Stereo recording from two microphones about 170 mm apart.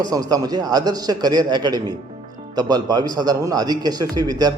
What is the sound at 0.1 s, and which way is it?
Speech, 20° right (ahead or behind).